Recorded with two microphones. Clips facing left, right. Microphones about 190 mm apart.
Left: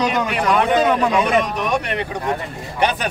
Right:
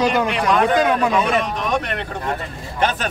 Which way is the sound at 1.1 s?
10° left (ahead or behind).